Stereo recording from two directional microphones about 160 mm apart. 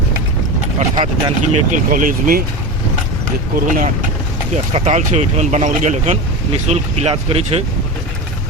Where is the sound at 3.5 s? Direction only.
55° right (ahead or behind); by 7.6 s 40° right (ahead or behind).